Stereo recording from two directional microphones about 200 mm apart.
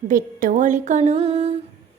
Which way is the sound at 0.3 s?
40° right (ahead or behind).